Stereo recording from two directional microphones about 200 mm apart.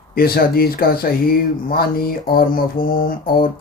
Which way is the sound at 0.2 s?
50° left (ahead or behind).